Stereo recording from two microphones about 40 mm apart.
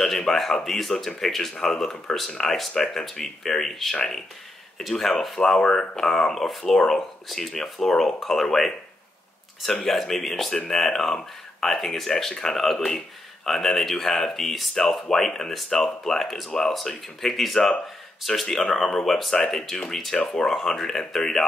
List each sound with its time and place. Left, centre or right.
0.0 s speech: centre
9.8 s speech: centre